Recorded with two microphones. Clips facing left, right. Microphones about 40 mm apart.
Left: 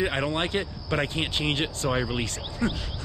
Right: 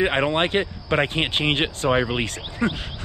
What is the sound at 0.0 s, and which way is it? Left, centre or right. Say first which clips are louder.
Speech: right 6 dB; right.